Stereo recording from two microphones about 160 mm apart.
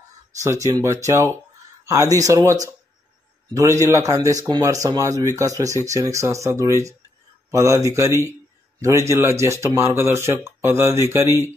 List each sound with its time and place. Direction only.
0.4 s a man's voice: 20° right (ahead or behind)